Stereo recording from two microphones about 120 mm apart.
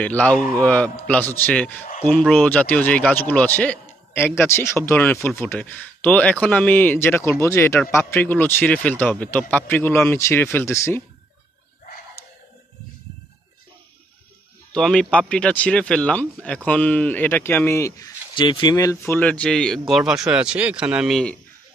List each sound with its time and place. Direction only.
0.0 s speech: 10° left (ahead or behind)
14.7 s speech: 5° left (ahead or behind); by 18.1 s 25° left (ahead or behind)
18.3 s speech: 45° left (ahead or behind)
18.8 s speech: 25° left (ahead or behind)
19.1 s speech: 10° left (ahead or behind); by 21.2 s 5° right (ahead or behind)